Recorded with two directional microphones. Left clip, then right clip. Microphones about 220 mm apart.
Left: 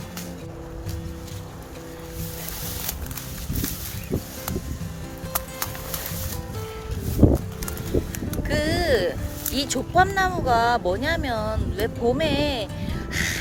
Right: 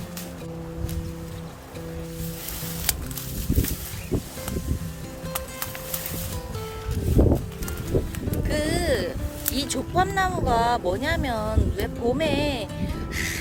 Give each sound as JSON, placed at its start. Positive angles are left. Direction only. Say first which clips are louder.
{"t": 7.2, "sound": "music", "louder": "left 2 dB", "side_deg": 30}
{"t": 8.4, "sound": "music", "louder": "left 2 dB", "side_deg": 10}
{"t": 9.6, "sound": "speech", "louder": "left 4 dB", "side_deg": 10}